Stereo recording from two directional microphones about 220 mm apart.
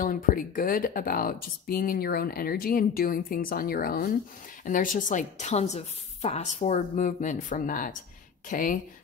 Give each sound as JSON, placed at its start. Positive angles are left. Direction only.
{"t": 0.0, "sound": "speech", "side_deg": 40}